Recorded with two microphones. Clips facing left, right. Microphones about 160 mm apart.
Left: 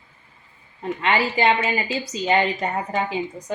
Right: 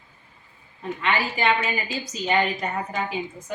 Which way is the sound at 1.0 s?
25° left (ahead or behind).